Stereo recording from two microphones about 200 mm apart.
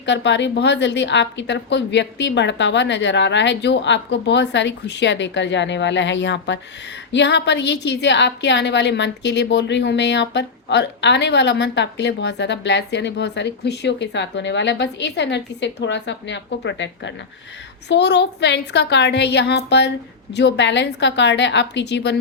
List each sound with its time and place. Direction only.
0.0 s a woman's voice: 60° left (ahead or behind)